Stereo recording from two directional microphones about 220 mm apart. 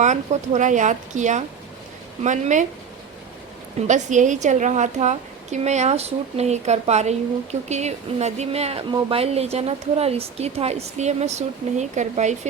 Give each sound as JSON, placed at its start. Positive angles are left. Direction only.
{"t": 0.0, "sound": "a woman's voice", "side_deg": -35}
{"t": 3.8, "sound": "a woman's voice", "side_deg": -35}